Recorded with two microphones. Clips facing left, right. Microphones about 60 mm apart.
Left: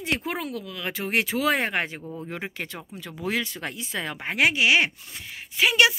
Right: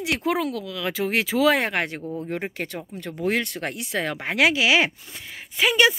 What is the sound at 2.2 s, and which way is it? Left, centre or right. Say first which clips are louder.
Speech: right 4 dB; right.